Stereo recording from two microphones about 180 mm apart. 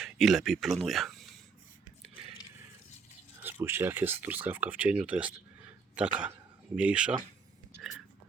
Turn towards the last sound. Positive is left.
turn(degrees=-5)  # may be behind; listen again after turning